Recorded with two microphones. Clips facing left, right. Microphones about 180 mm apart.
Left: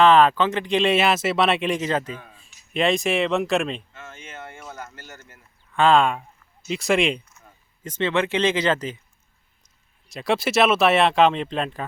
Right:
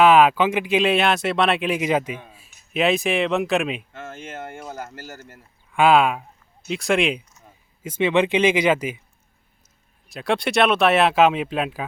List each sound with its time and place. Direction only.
0.0 s speech: 10° right (ahead or behind)
3.9 s a sound: 50° right (ahead or behind)
5.7 s speech: 10° right (ahead or behind)
7.3 s speech: 10° right (ahead or behind)
10.1 s speech: centre (ahead or behind)